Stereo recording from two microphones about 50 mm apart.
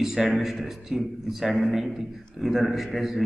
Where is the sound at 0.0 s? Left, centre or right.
Centre.